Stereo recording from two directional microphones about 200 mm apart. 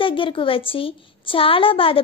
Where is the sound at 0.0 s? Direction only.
25° left (ahead or behind).